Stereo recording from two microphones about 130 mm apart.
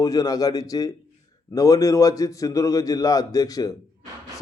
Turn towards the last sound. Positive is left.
turn(degrees=25)  # may be behind; listen again after turning